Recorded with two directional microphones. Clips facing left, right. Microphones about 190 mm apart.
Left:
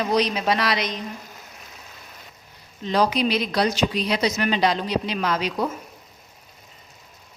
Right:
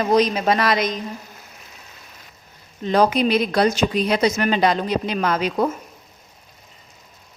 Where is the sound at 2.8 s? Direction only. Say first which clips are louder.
Right 4 dB; 50° right (ahead or behind).